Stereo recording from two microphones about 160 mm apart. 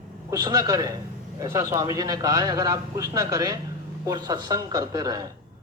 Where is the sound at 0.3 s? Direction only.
25° right (ahead or behind).